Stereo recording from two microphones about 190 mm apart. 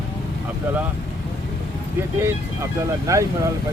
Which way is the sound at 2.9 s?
15° right (ahead or behind).